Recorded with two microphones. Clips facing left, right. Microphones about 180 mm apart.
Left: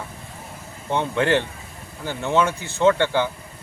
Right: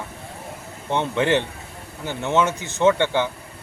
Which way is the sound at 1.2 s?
15° right (ahead or behind).